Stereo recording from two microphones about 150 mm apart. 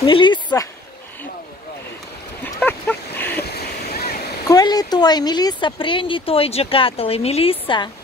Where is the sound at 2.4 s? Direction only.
15° left (ahead or behind).